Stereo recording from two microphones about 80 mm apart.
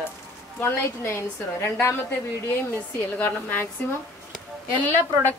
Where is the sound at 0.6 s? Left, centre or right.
Left.